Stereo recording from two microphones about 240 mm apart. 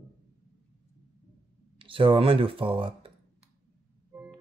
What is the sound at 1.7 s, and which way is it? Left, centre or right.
Speech, right.